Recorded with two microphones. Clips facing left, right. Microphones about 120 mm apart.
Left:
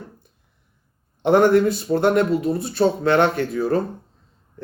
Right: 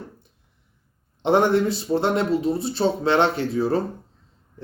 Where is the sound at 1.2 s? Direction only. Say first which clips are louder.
Left 3 dB; 25° right (ahead or behind).